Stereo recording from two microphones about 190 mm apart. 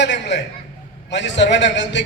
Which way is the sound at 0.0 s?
65° left (ahead or behind).